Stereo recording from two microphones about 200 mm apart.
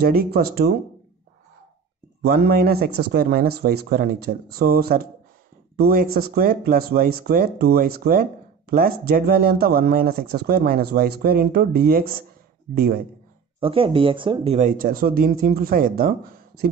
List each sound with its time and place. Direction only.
0.0 s speech: 50° right (ahead or behind)
2.2 s speech: 55° right (ahead or behind)
13.6 s speech: 30° right (ahead or behind); by 16.6 s 45° right (ahead or behind)